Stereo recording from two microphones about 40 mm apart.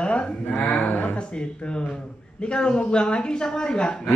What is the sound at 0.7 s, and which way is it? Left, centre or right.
Speech, left.